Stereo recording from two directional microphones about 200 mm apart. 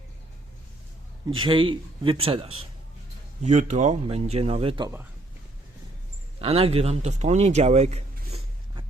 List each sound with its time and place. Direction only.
1.5 s a man's voice: 25° right (ahead or behind)
6.4 s speech: 30° right (ahead or behind)